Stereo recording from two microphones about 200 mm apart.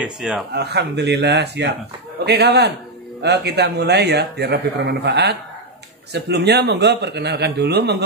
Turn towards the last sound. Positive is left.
turn(degrees=-55)  # may be behind; listen again after turning